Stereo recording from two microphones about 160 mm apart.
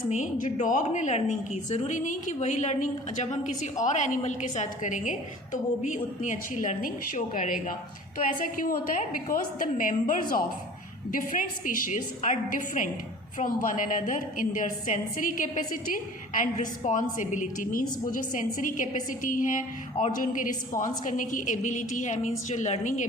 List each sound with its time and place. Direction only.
0.1 s a woman's voice: 45° left (ahead or behind)